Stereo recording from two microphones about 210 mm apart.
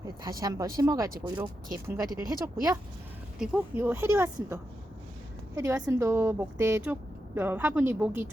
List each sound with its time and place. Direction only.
0.0 s a woman's voice: 20° right (ahead or behind)
3.3 s a woman's voice: 5° right (ahead or behind)